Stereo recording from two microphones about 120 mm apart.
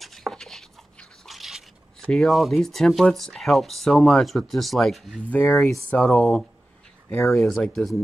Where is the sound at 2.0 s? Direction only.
5° left (ahead or behind).